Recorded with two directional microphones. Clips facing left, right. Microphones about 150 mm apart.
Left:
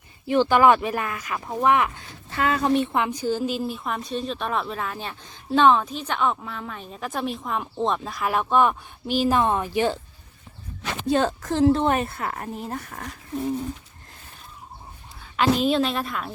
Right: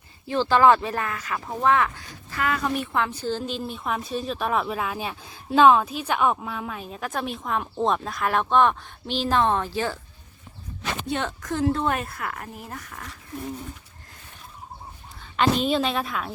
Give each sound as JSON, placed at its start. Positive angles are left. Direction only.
{"t": 0.3, "sound": "a woman's voice", "side_deg": 15}
{"t": 11.0, "sound": "a woman's voice", "side_deg": 35}
{"t": 15.4, "sound": "a woman's voice", "side_deg": 0}